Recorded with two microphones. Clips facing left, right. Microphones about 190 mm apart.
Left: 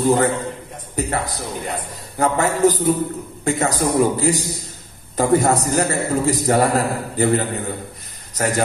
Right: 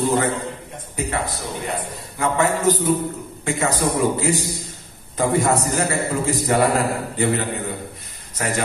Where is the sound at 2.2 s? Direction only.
40° left (ahead or behind).